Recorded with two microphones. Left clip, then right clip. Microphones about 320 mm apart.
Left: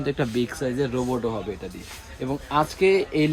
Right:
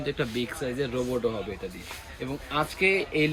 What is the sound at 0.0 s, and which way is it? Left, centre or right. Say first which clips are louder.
Speech: left 4 dB; left.